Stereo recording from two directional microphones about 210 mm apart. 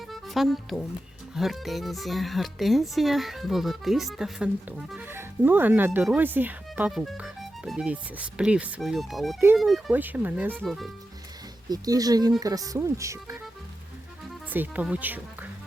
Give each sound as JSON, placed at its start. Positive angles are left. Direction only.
{"t": 0.1, "sound": "speech", "side_deg": 0}
{"t": 10.5, "sound": "speech", "side_deg": 0}
{"t": 11.7, "sound": "speech", "side_deg": -15}
{"t": 14.5, "sound": "speech", "side_deg": -10}